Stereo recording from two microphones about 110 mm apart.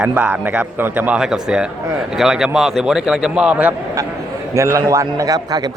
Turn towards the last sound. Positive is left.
turn(degrees=-35)  # may be behind; listen again after turning